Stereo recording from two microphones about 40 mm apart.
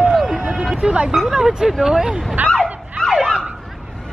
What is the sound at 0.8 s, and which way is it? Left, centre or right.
Speech, right.